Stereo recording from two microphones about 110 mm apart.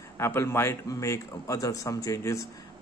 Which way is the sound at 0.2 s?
25° left (ahead or behind).